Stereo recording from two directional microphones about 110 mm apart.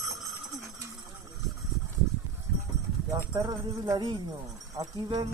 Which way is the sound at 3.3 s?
40° right (ahead or behind).